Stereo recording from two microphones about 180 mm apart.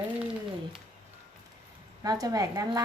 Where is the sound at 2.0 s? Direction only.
20° right (ahead or behind).